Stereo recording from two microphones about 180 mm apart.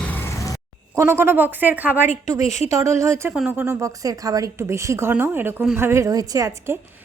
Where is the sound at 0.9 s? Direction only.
15° right (ahead or behind).